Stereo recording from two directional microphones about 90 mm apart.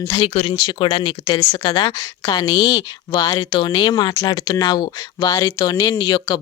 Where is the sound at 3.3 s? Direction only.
60° left (ahead or behind).